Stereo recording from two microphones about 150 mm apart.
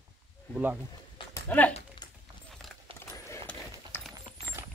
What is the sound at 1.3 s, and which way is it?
Speech, 10° left (ahead or behind).